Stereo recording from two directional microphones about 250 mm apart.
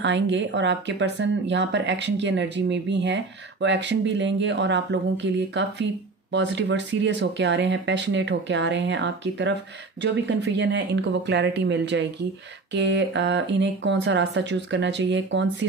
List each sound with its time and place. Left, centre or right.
0.0 s speech: right